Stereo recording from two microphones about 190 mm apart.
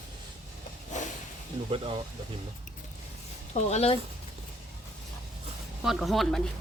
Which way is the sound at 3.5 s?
35° left (ahead or behind).